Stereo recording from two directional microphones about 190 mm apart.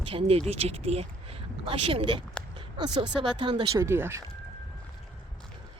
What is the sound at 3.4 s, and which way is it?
Speech, 25° right (ahead or behind).